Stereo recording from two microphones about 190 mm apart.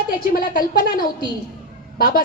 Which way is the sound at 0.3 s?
50° left (ahead or behind).